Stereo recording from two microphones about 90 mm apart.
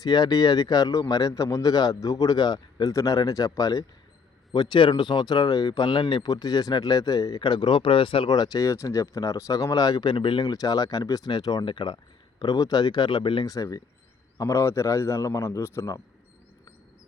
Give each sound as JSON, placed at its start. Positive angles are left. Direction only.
{"t": 0.0, "sound": "speech", "side_deg": 50}
{"t": 4.5, "sound": "speech", "side_deg": 55}
{"t": 8.3, "sound": "speech", "side_deg": 45}
{"t": 10.5, "sound": "speech", "side_deg": 45}
{"t": 11.6, "sound": "speech", "side_deg": 60}
{"t": 12.4, "sound": "speech", "side_deg": 45}
{"t": 13.4, "sound": "a man's voice", "side_deg": 40}